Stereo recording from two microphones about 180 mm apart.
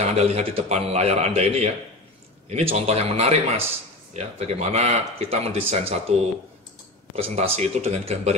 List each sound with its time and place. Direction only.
0.0 s a man's voice: 35° right (ahead or behind)
7.2 s a man's voice: 35° right (ahead or behind)